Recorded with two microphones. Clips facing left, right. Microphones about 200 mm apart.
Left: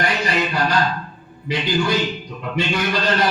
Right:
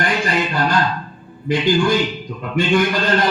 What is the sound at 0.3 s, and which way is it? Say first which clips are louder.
Music: right 1 dB; 50° right (ahead or behind).